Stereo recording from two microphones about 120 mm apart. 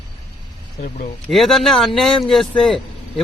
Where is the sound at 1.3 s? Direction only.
Centre (ahead or behind).